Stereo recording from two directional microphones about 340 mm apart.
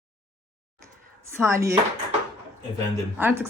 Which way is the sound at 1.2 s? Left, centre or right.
Centre.